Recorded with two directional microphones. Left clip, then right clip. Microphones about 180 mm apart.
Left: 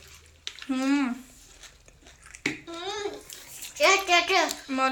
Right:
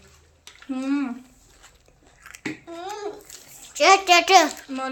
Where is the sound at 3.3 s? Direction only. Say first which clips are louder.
Even; 55° right (ahead or behind).